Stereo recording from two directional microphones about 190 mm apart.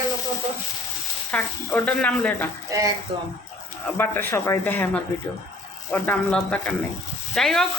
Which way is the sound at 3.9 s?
10° left (ahead or behind).